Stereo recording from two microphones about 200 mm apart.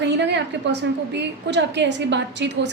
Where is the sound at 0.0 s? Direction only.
60° right (ahead or behind).